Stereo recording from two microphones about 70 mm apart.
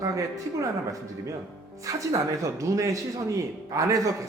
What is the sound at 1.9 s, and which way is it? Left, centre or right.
A man's voice, right.